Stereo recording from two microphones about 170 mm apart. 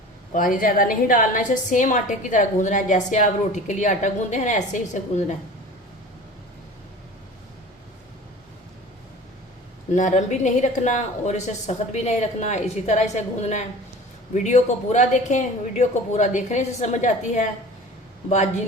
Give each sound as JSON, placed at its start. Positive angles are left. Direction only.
{"t": 0.3, "sound": "a woman's voice", "side_deg": 55}
{"t": 9.9, "sound": "a woman's voice", "side_deg": 45}